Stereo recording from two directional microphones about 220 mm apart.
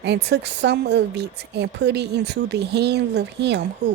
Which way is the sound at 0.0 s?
50° right (ahead or behind).